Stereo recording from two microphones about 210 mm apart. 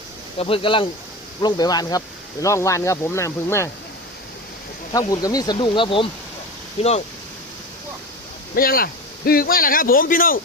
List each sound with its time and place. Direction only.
0.3 s speech: 25° left (ahead or behind)
4.9 s speech: 15° left (ahead or behind)
8.5 s a man's voice: 45° left (ahead or behind)